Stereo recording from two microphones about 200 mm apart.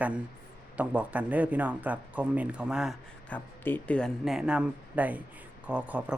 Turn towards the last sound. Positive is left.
turn(degrees=-5)  # may be behind; listen again after turning